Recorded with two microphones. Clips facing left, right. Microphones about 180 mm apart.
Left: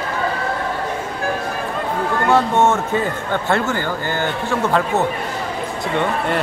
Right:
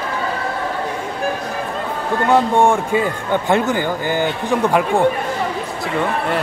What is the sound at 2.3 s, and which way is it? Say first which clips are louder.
A man's voice: right 2 dB; 15° right (ahead or behind).